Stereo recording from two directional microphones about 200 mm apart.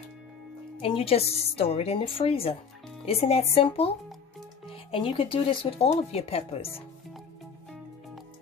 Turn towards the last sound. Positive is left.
turn(degrees=30)  # may be behind; listen again after turning